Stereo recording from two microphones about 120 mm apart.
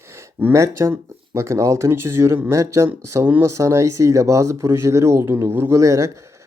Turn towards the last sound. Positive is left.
turn(degrees=-25)  # may be behind; listen again after turning